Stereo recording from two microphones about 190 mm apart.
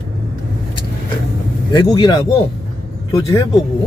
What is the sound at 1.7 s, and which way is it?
A man's voice, 25° left (ahead or behind).